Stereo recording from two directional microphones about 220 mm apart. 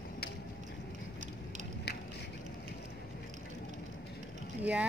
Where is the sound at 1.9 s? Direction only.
50° left (ahead or behind).